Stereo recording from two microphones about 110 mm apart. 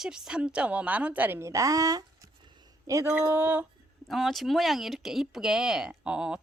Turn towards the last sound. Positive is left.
turn(degrees=-5)  # may be behind; listen again after turning